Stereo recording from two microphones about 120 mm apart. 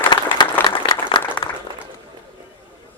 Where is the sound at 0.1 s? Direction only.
40° left (ahead or behind).